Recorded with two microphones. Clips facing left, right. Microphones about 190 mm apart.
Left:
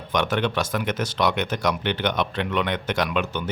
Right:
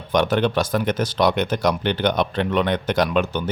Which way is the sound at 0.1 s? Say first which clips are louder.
Right 5 dB; 35° right (ahead or behind).